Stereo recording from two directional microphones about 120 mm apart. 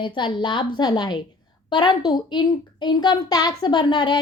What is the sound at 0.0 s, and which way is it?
A child's voice, 40° left (ahead or behind).